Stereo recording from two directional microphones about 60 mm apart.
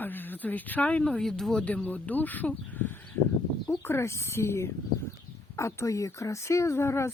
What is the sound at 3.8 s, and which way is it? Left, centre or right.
Speech, left.